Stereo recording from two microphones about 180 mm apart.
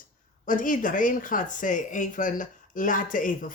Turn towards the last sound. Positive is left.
turn(degrees=45)  # may be behind; listen again after turning